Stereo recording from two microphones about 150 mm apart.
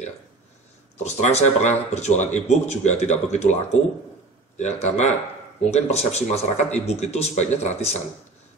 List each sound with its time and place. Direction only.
1.0 s speech: 50° left (ahead or behind)
4.6 s speech: 50° left (ahead or behind)